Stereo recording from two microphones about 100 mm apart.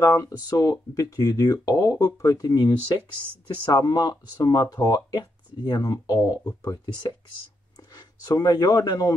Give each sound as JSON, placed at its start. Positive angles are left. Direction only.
{"t": 0.0, "sound": "a man's voice", "side_deg": 35}